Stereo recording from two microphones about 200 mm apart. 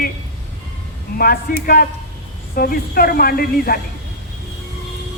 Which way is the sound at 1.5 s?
45° left (ahead or behind).